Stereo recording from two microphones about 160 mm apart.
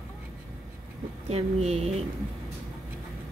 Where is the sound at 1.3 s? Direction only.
40° right (ahead or behind).